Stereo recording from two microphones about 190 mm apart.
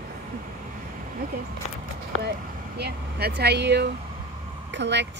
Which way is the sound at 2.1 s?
90° left.